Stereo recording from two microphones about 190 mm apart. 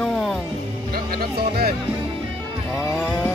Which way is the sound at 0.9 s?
55° right (ahead or behind).